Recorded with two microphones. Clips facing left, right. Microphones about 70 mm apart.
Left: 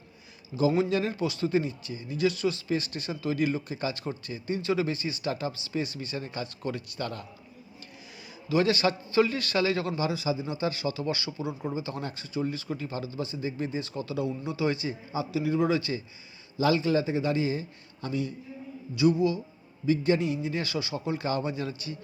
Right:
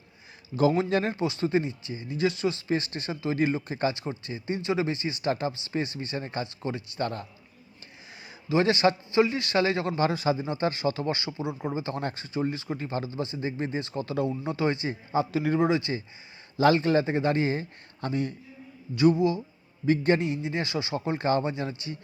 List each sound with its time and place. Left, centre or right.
0.8 s speech: right
3.9 s speech: right
8.4 s speech: right
10.0 s speech: right
10.4 s speech: right
11.8 s speech: right
15.5 s speech: right
16.6 s speech: right
19.1 s speech: right
19.8 s speech: right
20.4 s speech: right